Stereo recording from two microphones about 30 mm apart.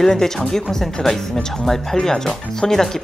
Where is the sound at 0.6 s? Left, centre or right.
Centre.